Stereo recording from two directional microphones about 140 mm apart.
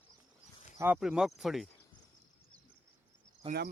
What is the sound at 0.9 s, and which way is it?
Speech, 5° right (ahead or behind).